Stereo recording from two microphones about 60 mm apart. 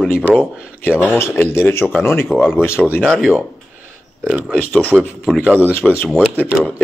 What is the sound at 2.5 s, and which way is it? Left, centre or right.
Speech, left.